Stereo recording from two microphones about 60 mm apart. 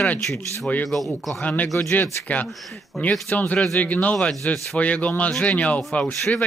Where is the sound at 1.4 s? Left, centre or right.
Left.